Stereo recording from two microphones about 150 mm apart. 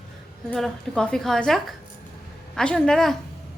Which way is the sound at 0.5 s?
5° left (ahead or behind).